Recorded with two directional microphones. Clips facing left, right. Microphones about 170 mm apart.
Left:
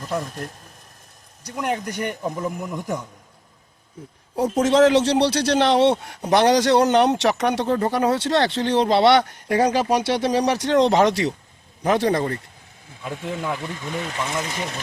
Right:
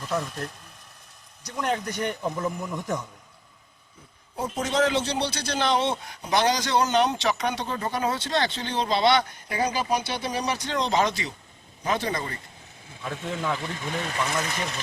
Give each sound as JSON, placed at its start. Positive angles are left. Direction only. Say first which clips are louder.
{"t": 1.5, "sound": "a man's voice", "louder": "left 2 dB", "side_deg": 10}
{"t": 4.6, "sound": "speech", "louder": "left 9 dB", "side_deg": 85}
{"t": 13.0, "sound": "a man's voice", "louder": "left 2 dB", "side_deg": 10}